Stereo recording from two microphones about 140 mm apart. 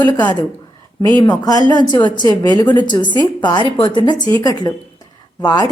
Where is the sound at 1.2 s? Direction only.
30° left (ahead or behind).